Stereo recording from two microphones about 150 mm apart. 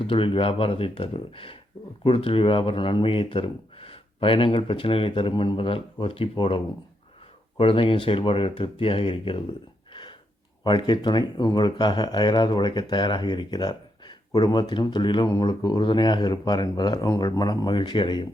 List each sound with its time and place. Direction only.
0.0 s speech: 35° left (ahead or behind)
9.9 s a sound: 30° left (ahead or behind)
10.6 s speech: 30° left (ahead or behind)